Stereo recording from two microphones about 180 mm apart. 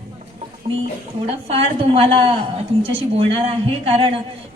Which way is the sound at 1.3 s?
35° right (ahead or behind).